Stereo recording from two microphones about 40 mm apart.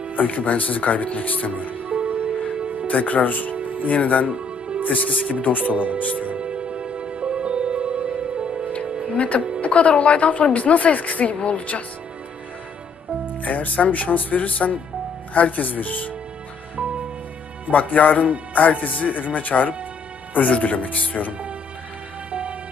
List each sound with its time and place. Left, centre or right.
0.2 s a woman's voice: left
1.9 s music: right
2.8 s a woman's voice: left
5.7 s speech: right
6.0 s a woman's voice: left
6.4 s music: right
8.7 s music: left
9.6 s a woman's voice: left
13.4 s a woman's voice: left
17.7 s a woman's voice: left
22.3 s music: right